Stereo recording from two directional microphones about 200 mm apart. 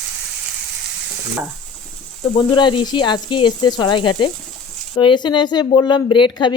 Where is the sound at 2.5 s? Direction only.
25° left (ahead or behind).